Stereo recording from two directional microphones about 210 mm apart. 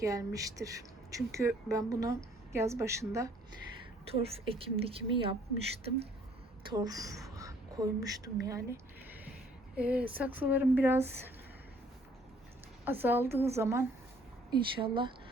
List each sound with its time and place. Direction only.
0.0 s a woman's voice: 15° right (ahead or behind)
4.0 s a woman's voice: 30° right (ahead or behind)
6.7 s a woman's voice: 20° right (ahead or behind)
12.8 s a woman's voice: 10° right (ahead or behind)